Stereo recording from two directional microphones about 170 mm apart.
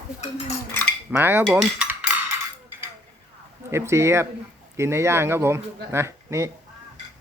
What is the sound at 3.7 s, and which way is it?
Speech, 15° right (ahead or behind).